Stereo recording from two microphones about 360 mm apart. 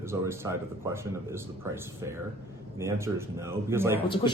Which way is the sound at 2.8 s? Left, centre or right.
Centre.